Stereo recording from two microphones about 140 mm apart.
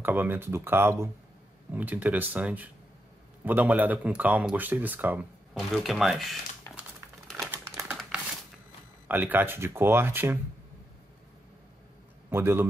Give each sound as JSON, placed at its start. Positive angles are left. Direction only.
{"t": 0.0, "sound": "speech", "side_deg": -15}
{"t": 5.5, "sound": "speech", "side_deg": 0}
{"t": 7.5, "sound": "typewriter", "side_deg": -10}
{"t": 9.0, "sound": "speech", "side_deg": -15}
{"t": 12.3, "sound": "speech", "side_deg": -15}